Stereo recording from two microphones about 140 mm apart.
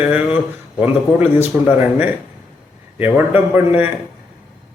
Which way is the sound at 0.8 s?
15° right (ahead or behind).